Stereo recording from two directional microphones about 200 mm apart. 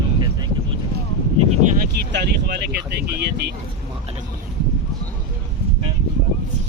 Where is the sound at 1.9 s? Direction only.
55° right (ahead or behind).